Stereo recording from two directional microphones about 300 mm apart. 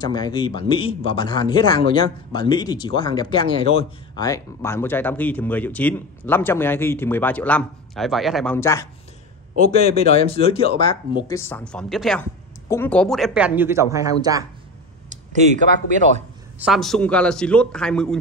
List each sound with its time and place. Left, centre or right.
0.0 s speech: centre
9.7 s a woman's voice: centre
16.5 s a woman's voice: centre